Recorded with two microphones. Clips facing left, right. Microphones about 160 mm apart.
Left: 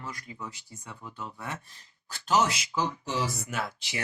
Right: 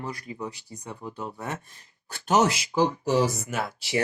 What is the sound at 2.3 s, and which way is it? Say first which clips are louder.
Speech: right 4 dB; 25° right (ahead or behind).